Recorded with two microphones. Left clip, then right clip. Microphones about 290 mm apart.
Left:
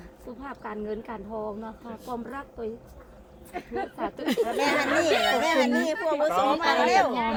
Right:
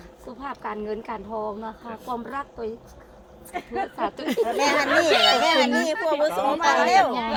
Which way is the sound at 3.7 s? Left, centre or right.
Right.